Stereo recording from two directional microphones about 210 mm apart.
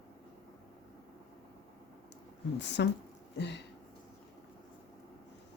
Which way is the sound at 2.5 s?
55° left (ahead or behind).